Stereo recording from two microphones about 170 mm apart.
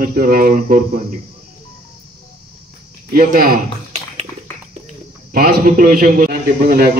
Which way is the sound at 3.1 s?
55° right (ahead or behind).